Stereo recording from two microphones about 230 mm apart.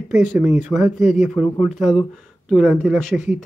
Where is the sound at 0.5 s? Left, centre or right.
Left.